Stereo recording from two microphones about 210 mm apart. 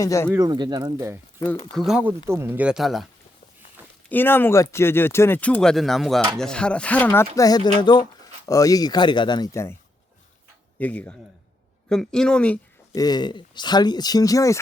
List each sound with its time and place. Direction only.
0.0 s speech: 15° left (ahead or behind)
0.3 s speech: 20° right (ahead or behind)
1.4 s speech: 10° left (ahead or behind)
1.7 s speech: centre (ahead or behind)
4.1 s speech: 10° left (ahead or behind)
10.8 s speech: 10° left (ahead or behind)
12.9 s speech: 20° left (ahead or behind)